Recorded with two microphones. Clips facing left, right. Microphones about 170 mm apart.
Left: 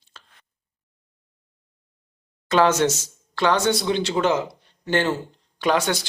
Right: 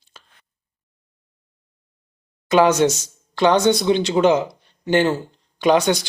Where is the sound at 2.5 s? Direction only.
15° right (ahead or behind).